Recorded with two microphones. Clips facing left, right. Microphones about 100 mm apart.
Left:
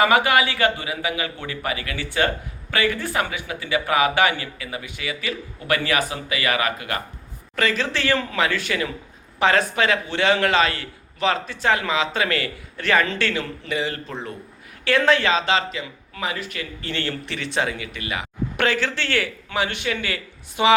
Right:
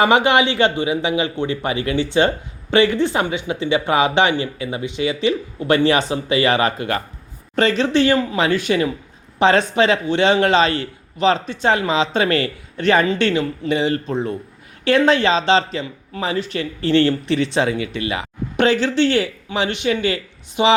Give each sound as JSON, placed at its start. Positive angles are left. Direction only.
{"t": 0.0, "sound": "a man's voice", "side_deg": -25}